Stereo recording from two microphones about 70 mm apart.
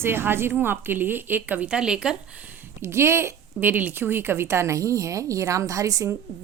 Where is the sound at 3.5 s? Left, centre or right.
Right.